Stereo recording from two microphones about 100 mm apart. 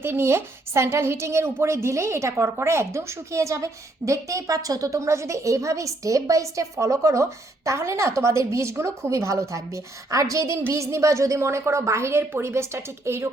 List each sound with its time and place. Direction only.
0.0 s a woman's voice: 25° right (ahead or behind)